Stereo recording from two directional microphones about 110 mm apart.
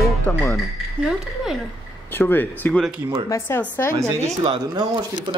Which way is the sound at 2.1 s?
20° left (ahead or behind).